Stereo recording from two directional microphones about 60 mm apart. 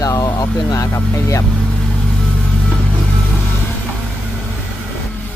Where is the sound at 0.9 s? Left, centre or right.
Left.